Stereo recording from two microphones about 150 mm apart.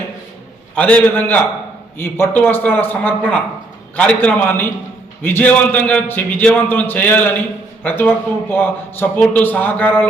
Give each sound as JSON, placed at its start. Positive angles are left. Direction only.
{"t": 0.8, "sound": "a man's voice", "side_deg": 10}